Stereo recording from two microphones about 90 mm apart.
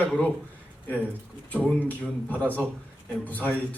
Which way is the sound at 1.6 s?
15° left (ahead or behind).